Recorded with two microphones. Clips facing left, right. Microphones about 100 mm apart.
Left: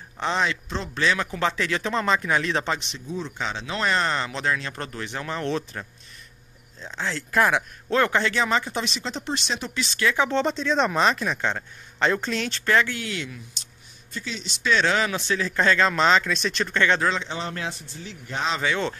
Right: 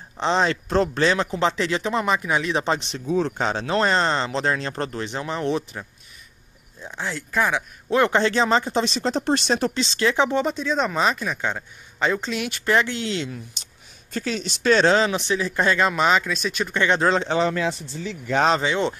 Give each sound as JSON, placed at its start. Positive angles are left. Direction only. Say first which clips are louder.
{"t": 0.2, "sound": "speech", "louder": "right 4 dB", "side_deg": -30}
{"t": 2.7, "sound": "speech", "louder": "right 4 dB", "side_deg": -40}
{"t": 3.1, "sound": "speech", "louder": "right 10 dB", "side_deg": -65}
{"t": 3.3, "sound": "a man's voice", "louder": "right 7 dB", "side_deg": -45}
{"t": 7.2, "sound": "speech", "louder": "left 2 dB", "side_deg": 0}
{"t": 7.9, "sound": "speech", "louder": "right 3 dB", "side_deg": -25}
{"t": 9.8, "sound": "speech", "louder": "right 3 dB", "side_deg": -30}
{"t": 10.3, "sound": "a man's voice", "louder": "even", "side_deg": -10}
{"t": 14.1, "sound": "a man's voice", "louder": "right 7 dB", "side_deg": -50}
{"t": 17.0, "sound": "speech", "louder": "right 5 dB", "side_deg": -40}
{"t": 18.6, "sound": "speech", "louder": "right 3 dB", "side_deg": -20}